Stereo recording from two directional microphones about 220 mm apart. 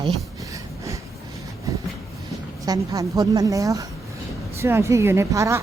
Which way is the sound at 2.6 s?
15° right (ahead or behind).